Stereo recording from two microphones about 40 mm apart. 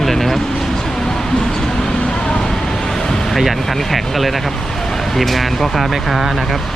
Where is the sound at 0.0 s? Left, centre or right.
Centre.